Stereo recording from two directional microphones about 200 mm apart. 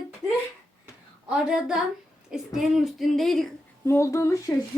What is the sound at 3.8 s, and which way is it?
Speech, 15° left (ahead or behind).